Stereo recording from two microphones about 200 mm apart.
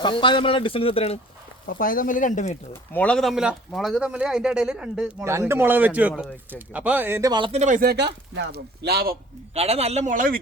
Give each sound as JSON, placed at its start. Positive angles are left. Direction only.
{"t": 0.0, "sound": "a man's voice", "side_deg": 25}
{"t": 1.6, "sound": "speech", "side_deg": 45}
{"t": 2.9, "sound": "speech", "side_deg": 5}
{"t": 9.6, "sound": "speech", "side_deg": -30}